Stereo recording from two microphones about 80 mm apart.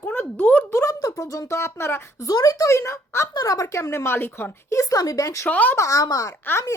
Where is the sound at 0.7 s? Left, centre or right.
Left.